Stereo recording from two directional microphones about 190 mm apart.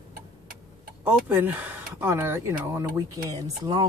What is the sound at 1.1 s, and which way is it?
A woman's voice, 10° right (ahead or behind).